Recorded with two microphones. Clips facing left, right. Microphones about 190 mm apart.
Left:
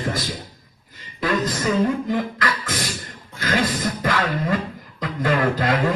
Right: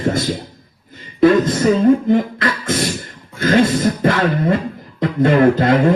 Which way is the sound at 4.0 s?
30° right (ahead or behind).